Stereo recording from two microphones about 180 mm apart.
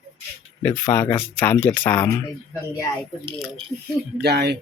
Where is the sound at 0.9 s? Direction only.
10° left (ahead or behind).